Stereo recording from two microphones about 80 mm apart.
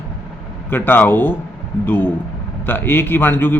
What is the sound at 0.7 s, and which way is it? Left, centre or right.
Speech, left.